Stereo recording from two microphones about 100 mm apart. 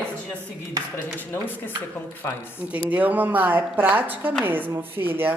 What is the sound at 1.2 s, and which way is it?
Speech, 20° left (ahead or behind).